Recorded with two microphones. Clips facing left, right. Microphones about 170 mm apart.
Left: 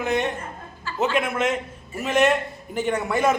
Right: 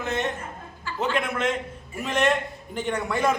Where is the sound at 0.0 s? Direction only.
15° left (ahead or behind).